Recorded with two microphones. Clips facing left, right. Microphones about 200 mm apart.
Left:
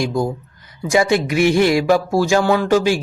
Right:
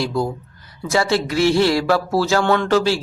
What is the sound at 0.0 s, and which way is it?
Speech, 15° left (ahead or behind).